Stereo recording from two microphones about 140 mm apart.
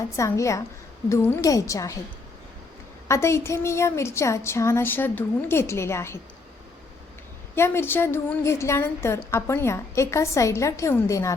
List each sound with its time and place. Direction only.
0.2 s a woman's voice: 20° left (ahead or behind)
3.1 s a woman's voice: 20° left (ahead or behind)
7.5 s a woman's voice: 15° left (ahead or behind)